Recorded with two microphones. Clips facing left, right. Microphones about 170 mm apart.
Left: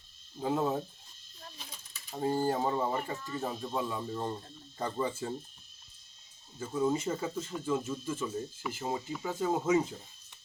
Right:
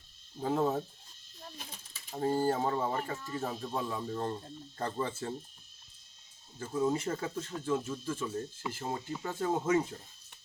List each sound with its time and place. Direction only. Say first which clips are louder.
0.4 s speech: even; 5° left (ahead or behind)
2.3 s speech: even; 10° left (ahead or behind)
6.6 s speech: left 1 dB; 5° left (ahead or behind)